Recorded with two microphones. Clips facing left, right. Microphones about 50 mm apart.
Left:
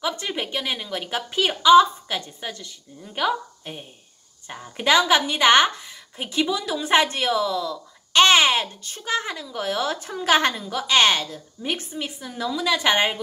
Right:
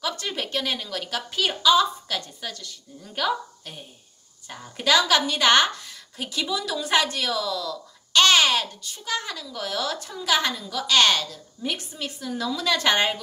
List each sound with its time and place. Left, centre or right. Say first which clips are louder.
0.0 s a woman's voice: left 2 dB; centre
8.8 s a woman's voice: left 4 dB; left; by 13.2 s centre